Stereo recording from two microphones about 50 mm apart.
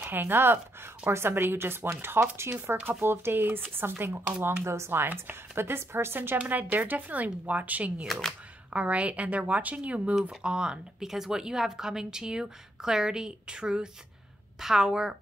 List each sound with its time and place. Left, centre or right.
0.0 s speech: right
2.5 s speech: right
4.6 s speech: right
5.0 s speech: right
6.3 s speech: right
8.1 s speech: centre
8.7 s a woman's voice: right; by 15.1 s centre